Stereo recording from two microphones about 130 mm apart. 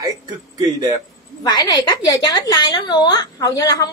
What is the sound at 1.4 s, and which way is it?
A woman's voice, 30° left (ahead or behind).